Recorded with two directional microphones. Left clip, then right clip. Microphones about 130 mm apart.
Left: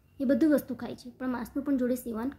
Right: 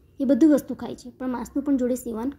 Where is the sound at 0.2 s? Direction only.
20° right (ahead or behind).